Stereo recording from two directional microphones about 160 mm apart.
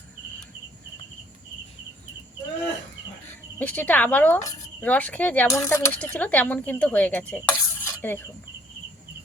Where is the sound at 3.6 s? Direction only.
10° left (ahead or behind).